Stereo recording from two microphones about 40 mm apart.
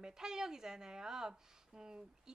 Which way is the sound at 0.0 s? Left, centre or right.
Centre.